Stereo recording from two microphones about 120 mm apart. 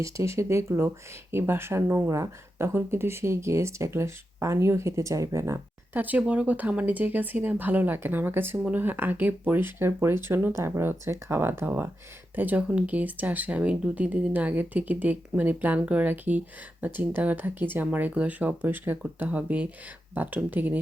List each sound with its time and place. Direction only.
0.0 s speech: 25° right (ahead or behind)